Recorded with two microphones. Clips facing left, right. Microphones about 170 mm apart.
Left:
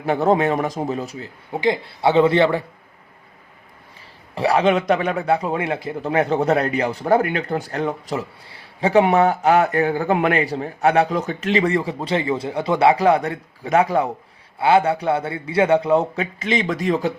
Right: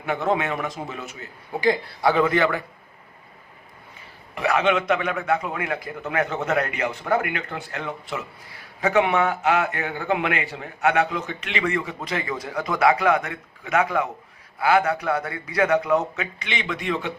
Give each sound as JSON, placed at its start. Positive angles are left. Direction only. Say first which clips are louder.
{"t": 0.0, "sound": "a man's voice", "louder": "left 6 dB", "side_deg": 35}
{"t": 1.6, "sound": "a man's voice", "louder": "left 2 dB", "side_deg": 25}
{"t": 4.4, "sound": "a man's voice", "louder": "left 4 dB", "side_deg": 35}